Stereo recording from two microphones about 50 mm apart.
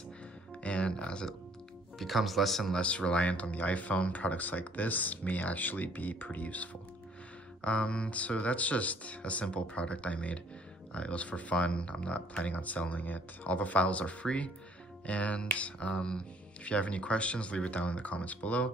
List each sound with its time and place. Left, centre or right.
0.7 s music: left
2.0 s speech: centre
2.7 s speech: left